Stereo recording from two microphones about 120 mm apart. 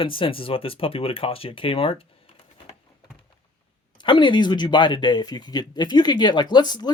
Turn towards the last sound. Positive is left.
turn(degrees=35)  # may be behind; listen again after turning